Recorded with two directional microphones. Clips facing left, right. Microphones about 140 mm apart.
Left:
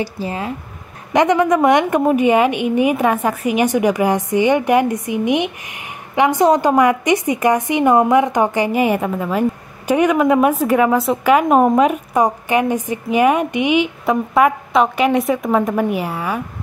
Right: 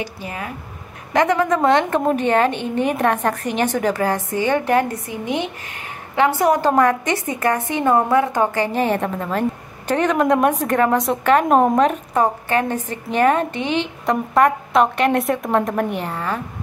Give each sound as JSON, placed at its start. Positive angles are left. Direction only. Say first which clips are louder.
{"t": 0.0, "sound": "speech", "louder": "left 5 dB", "side_deg": 30}
{"t": 1.1, "sound": "a woman's voice", "louder": "left 3 dB", "side_deg": 20}